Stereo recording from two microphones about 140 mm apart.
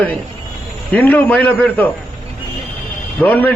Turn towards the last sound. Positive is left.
turn(degrees=10)  # may be behind; listen again after turning